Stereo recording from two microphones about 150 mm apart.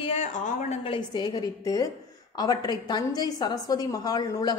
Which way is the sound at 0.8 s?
30° left (ahead or behind).